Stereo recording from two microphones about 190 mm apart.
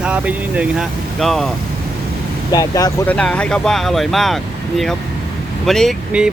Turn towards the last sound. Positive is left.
turn(degrees=0)  # may be behind; listen again after turning